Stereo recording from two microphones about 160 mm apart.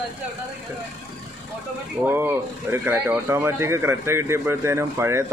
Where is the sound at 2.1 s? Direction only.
15° right (ahead or behind).